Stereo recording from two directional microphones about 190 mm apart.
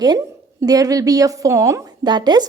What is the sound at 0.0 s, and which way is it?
A woman's voice, 15° right (ahead or behind).